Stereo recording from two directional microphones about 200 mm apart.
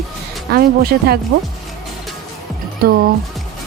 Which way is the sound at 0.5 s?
50° right (ahead or behind).